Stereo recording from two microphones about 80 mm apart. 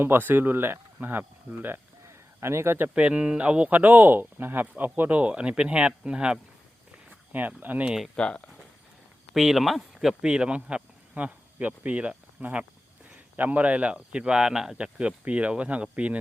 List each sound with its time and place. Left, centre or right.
0.0 s speech: right
2.0 s a sound: right
2.9 s speech: centre
7.3 s speech: right
7.9 s speech: centre
8.1 s speech: centre
9.3 s speech: centre